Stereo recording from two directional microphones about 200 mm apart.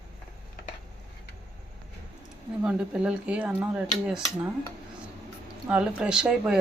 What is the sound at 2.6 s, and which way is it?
Speech, 5° right (ahead or behind).